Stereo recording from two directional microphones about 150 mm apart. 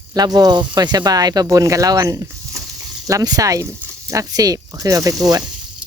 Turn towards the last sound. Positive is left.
turn(degrees=-25)  # may be behind; listen again after turning